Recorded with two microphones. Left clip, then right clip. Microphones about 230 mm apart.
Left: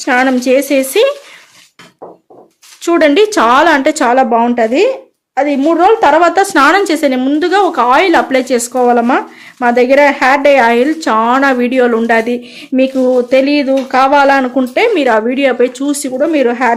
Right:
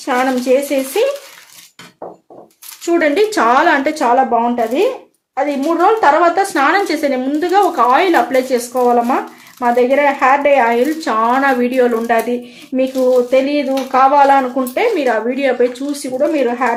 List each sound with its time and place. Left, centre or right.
0.0 s a woman's voice: left
2.8 s a woman's voice: left